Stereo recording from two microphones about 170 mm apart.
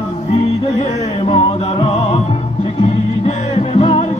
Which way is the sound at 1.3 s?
35° left (ahead or behind).